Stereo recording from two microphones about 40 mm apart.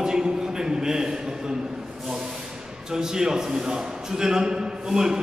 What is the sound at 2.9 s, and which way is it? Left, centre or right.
A man's voice, centre.